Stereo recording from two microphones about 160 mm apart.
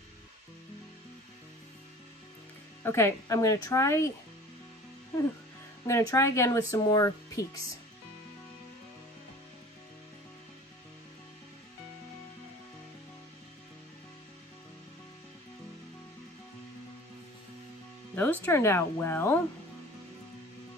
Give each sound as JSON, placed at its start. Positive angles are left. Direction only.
{"t": 2.8, "sound": "a woman's voice", "side_deg": 15}
{"t": 5.9, "sound": "speech", "side_deg": 20}
{"t": 18.1, "sound": "a woman's voice", "side_deg": 10}